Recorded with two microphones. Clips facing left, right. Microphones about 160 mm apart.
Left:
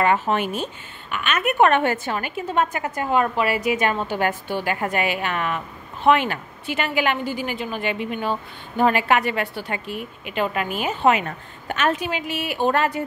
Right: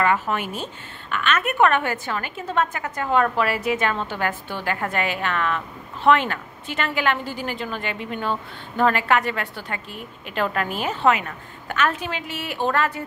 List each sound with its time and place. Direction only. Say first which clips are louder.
0.0 s a woman's voice: left 2 dB; 25° left (ahead or behind); by 11.1 s 10° left (ahead or behind)
11.2 s a woman's voice: left 3 dB; 20° left (ahead or behind)